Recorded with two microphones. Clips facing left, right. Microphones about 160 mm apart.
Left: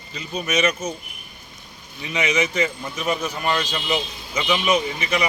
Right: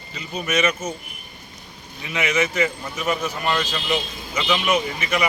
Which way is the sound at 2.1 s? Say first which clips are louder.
Even; 15° left (ahead or behind).